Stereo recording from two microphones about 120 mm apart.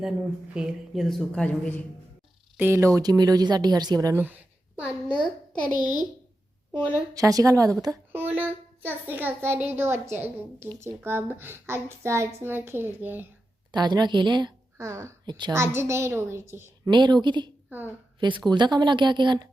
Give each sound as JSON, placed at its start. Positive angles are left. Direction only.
{"t": 0.5, "sound": "speech", "side_deg": -5}
{"t": 1.5, "sound": "speech", "side_deg": 10}
{"t": 2.6, "sound": "speech", "side_deg": -20}
{"t": 4.1, "sound": "a woman's voice", "side_deg": -15}
{"t": 5.2, "sound": "a child's voice", "side_deg": 40}
{"t": 6.7, "sound": "a woman's voice", "side_deg": 20}
{"t": 7.1, "sound": "a child's voice", "side_deg": -30}
{"t": 13.7, "sound": "speech", "side_deg": -35}
{"t": 14.8, "sound": "a woman's voice", "side_deg": -25}
{"t": 16.9, "sound": "speech", "side_deg": -40}